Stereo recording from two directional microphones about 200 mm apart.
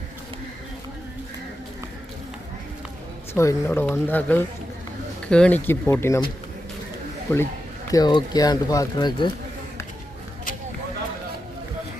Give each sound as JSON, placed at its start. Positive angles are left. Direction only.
{"t": 3.3, "sound": "speech", "side_deg": 10}
{"t": 7.3, "sound": "speech", "side_deg": 10}